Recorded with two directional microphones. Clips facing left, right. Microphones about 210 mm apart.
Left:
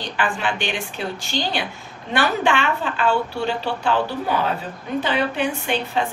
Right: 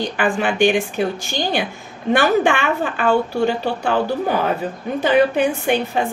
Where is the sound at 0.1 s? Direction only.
50° right (ahead or behind).